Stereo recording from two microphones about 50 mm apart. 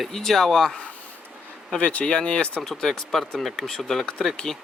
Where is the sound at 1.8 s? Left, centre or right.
Left.